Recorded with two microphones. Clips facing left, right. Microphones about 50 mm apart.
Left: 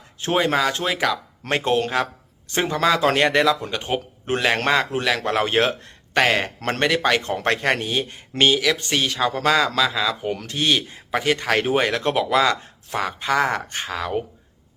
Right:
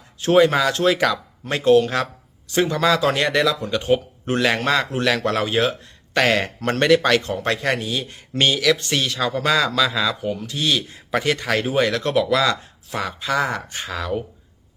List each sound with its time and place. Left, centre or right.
0.3 s speech: left
0.9 s a man's voice: centre
1.5 s speech: left
5.5 s speech: left
6.1 s speech: left
9.7 s a man's voice: centre
10.4 s speech: left